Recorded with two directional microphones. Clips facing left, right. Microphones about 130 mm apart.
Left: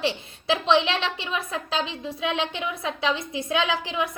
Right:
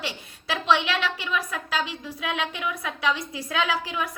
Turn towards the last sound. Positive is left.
turn(degrees=25)  # may be behind; listen again after turning